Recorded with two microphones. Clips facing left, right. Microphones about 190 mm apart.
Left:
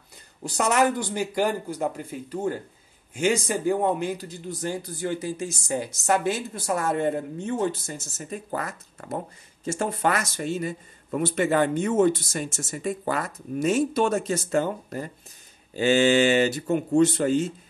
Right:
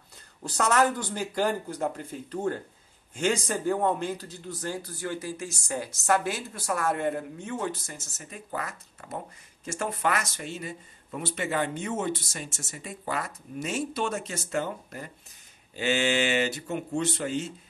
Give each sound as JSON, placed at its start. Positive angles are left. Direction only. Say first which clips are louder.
{"t": 0.4, "sound": "speech", "louder": "left 2 dB", "side_deg": 15}
{"t": 8.3, "sound": "speech", "louder": "left 5 dB", "side_deg": 40}
{"t": 9.7, "sound": "speech", "louder": "left 4 dB", "side_deg": 30}